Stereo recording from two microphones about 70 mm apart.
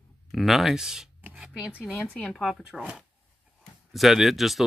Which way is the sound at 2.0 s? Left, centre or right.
Centre.